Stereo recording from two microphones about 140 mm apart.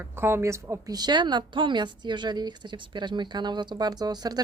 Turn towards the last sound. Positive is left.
turn(degrees=-30)  # may be behind; listen again after turning